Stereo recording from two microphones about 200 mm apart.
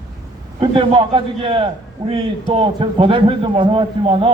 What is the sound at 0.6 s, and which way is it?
A man's voice, 25° right (ahead or behind).